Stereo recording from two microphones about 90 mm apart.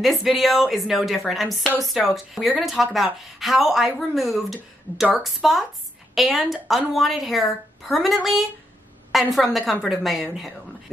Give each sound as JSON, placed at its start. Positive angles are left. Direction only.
{"t": 0.0, "sound": "a woman's voice", "side_deg": 0}